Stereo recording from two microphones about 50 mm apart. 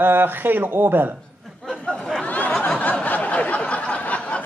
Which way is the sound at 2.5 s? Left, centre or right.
Centre.